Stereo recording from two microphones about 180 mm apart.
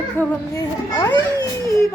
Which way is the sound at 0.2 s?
20° left (ahead or behind).